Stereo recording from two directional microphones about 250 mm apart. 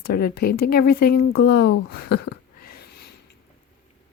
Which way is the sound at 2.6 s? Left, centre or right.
Left.